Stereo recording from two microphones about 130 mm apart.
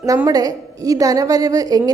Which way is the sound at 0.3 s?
30° right (ahead or behind).